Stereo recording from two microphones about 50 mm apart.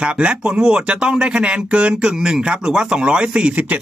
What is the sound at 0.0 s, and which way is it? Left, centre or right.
Speech, right.